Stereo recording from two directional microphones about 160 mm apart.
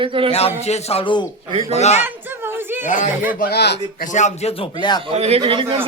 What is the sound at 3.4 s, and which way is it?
Speech, 85° left.